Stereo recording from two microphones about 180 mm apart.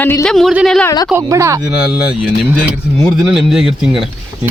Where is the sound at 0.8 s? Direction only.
20° left (ahead or behind).